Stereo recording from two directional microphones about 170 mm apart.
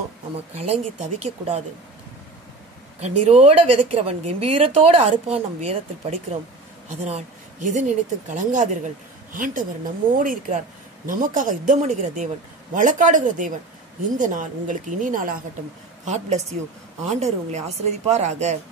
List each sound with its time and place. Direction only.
0.7 s a woman's voice: 40° right (ahead or behind)
3.0 s a woman's voice: 40° right (ahead or behind)